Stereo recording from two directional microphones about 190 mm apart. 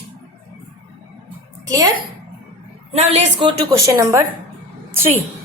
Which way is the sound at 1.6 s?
20° right (ahead or behind).